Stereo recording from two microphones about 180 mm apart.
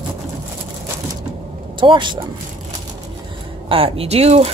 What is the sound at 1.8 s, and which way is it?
Speech, 25° right (ahead or behind).